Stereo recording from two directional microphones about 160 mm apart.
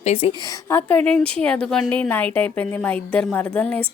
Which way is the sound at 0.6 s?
15° left (ahead or behind).